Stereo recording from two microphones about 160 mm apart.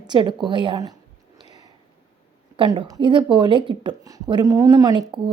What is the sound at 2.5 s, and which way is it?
A woman's voice, 30° right (ahead or behind).